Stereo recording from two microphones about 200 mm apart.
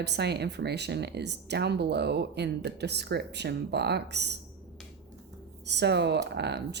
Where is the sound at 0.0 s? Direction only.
55° right (ahead or behind).